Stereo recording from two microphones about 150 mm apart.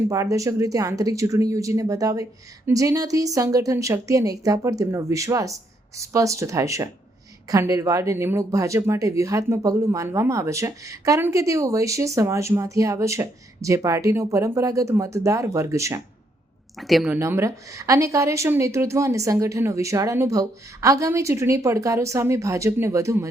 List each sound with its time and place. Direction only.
0.1 s speech: 20° right (ahead or behind)
16.8 s a woman's voice: centre (ahead or behind)
17.1 s speech: 15° right (ahead or behind)